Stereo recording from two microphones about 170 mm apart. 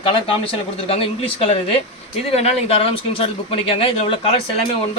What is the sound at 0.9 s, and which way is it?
Speech, 35° left (ahead or behind).